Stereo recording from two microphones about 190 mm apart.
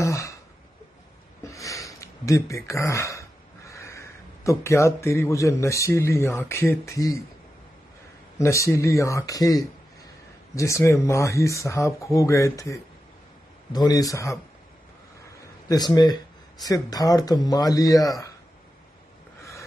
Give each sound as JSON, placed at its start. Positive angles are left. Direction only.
{"t": 0.0, "sound": "a sound", "side_deg": 15}
{"t": 1.4, "sound": "speech", "side_deg": 15}
{"t": 8.4, "sound": "speech", "side_deg": 15}
{"t": 15.7, "sound": "speech", "side_deg": 20}